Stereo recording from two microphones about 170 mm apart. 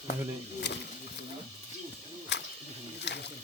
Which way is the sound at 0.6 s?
85° left.